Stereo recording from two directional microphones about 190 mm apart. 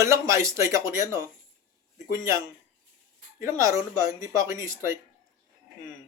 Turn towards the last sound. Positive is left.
turn(degrees=-15)  # may be behind; listen again after turning